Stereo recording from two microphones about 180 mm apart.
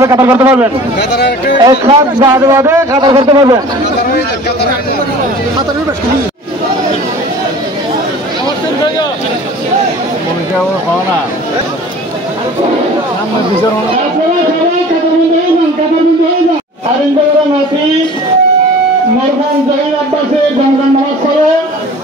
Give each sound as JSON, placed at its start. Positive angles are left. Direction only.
{"t": 0.0, "sound": "speech", "side_deg": -15}
{"t": 0.9, "sound": "speech", "side_deg": 75}
{"t": 1.6, "sound": "speech", "side_deg": -30}
{"t": 2.0, "sound": "a man's voice", "side_deg": -20}